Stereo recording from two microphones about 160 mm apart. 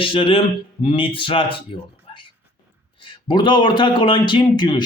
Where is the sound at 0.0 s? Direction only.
35° left (ahead or behind).